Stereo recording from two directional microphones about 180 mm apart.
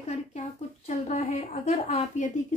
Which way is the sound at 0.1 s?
40° left (ahead or behind).